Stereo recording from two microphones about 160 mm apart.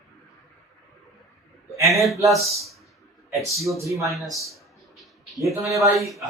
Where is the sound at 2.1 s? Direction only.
20° right (ahead or behind).